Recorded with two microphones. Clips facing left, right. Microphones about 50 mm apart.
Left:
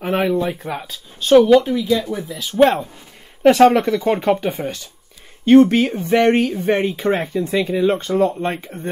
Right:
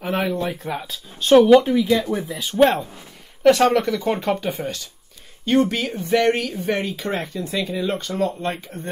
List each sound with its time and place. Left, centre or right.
0.0 s a sound: centre
0.4 s speech: centre
2.0 s speech: right
2.6 s speech: centre
3.4 s speech: centre
5.4 s speech: left